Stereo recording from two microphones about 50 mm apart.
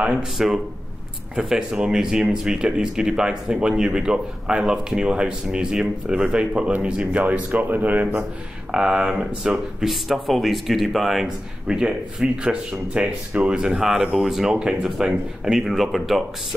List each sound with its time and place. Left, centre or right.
0.2 s speech: centre; by 8.1 s right
8.7 s speech: centre
9.8 s speech: centre
11.2 s speech: centre